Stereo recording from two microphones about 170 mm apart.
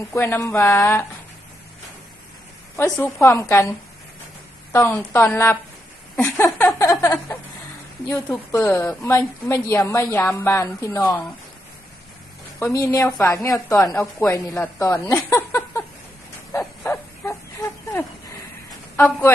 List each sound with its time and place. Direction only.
0.1 s a woman's voice: 15° left (ahead or behind)
2.7 s a woman's voice: 15° left (ahead or behind)
4.7 s a woman's voice: 15° left (ahead or behind)
12.5 s a woman's voice: 15° left (ahead or behind)
16.5 s a sound: 15° left (ahead or behind)